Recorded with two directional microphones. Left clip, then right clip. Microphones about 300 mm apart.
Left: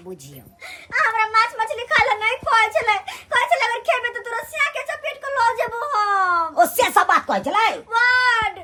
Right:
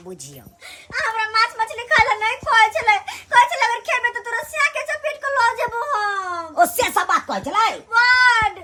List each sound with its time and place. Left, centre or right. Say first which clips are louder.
0.9 s a child's voice: left 2 dB; centre